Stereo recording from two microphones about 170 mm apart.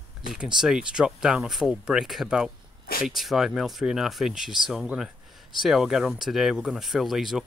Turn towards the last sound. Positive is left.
turn(degrees=0)  # may be behind; listen again after turning